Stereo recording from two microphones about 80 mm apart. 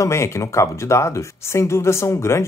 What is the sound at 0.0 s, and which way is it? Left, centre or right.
Speech, left.